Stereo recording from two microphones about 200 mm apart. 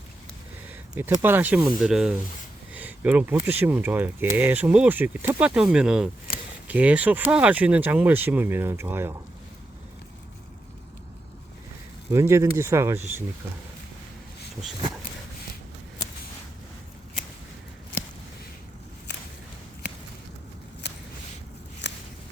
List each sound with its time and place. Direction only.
0.7 s speech: 10° right (ahead or behind)
2.7 s a sound: 10° right (ahead or behind)
3.3 s speech: 10° right (ahead or behind)
12.1 s speech: 15° right (ahead or behind)
20.8 s a sound: 55° left (ahead or behind)
21.8 s walk: 60° left (ahead or behind)